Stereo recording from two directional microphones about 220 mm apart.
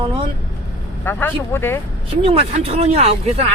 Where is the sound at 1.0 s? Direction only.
10° left (ahead or behind).